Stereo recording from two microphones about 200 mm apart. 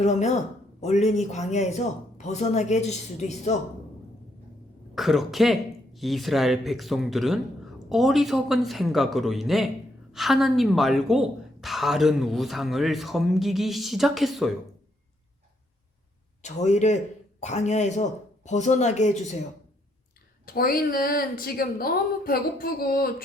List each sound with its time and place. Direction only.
0.0 s speech: 35° left (ahead or behind)
4.9 s speech: centre (ahead or behind)
16.4 s speech: 35° left (ahead or behind)
20.4 s a woman's voice: 45° left (ahead or behind)